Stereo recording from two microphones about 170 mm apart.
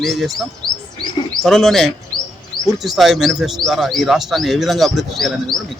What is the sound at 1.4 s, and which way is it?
Speech, centre (ahead or behind).